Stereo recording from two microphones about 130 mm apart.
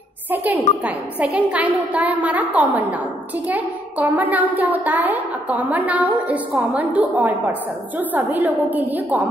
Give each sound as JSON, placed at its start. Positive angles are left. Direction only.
{"t": 0.3, "sound": "a child's voice", "side_deg": -10}